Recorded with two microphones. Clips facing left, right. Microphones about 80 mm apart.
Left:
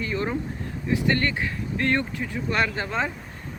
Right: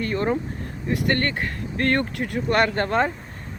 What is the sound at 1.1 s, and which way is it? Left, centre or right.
Speech, right.